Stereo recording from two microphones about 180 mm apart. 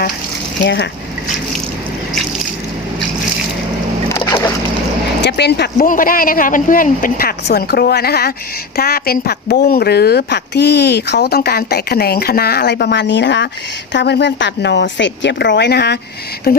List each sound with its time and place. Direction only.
0.6 s speech: 80° left
4.1 s a sound: 15° left (ahead or behind)
5.2 s speech: 70° left (ahead or behind)
5.7 s a woman's voice: 50° left (ahead or behind)